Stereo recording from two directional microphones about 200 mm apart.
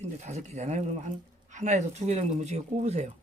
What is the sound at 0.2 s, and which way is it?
Speech, 35° right (ahead or behind).